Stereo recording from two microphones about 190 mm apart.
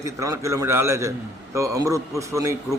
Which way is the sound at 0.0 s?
15° right (ahead or behind).